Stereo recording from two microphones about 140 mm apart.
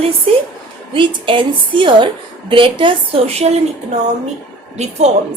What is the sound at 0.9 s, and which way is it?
A woman's voice, 35° right (ahead or behind).